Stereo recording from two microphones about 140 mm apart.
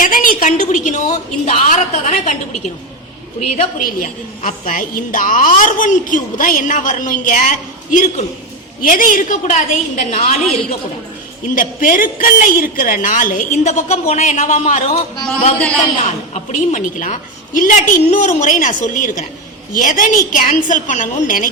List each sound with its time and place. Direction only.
0.0 s a woman's voice: 80° left; by 2.3 s 60° left (ahead or behind)
3.5 s a woman's voice: 65° left (ahead or behind)
8.8 s a woman's voice: 80° left; by 10.8 s 45° left (ahead or behind)
11.5 s a woman's voice: 75° left (ahead or behind); by 15.0 s 55° left (ahead or behind)
16.3 s a woman's voice: 60° left (ahead or behind)
18.1 s a woman's voice: 60° left (ahead or behind); by 21.5 s 75° left (ahead or behind)